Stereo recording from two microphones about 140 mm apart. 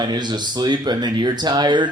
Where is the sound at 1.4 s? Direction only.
30° right (ahead or behind).